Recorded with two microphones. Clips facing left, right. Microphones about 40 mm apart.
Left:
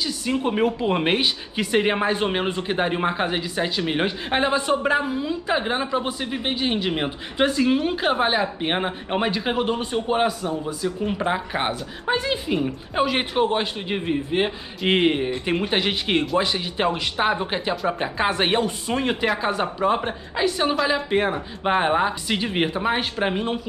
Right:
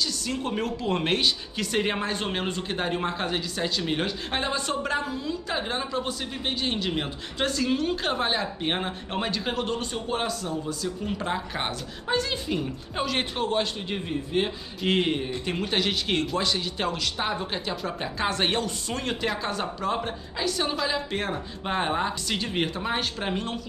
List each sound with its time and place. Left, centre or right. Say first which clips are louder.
0.0 s speech: left 5 dB; centre